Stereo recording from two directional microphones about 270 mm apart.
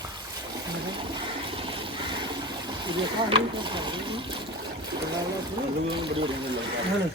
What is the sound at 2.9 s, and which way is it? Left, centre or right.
Speech, centre.